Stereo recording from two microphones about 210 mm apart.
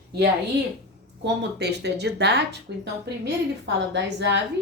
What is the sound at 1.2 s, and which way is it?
Speech, 55° right (ahead or behind).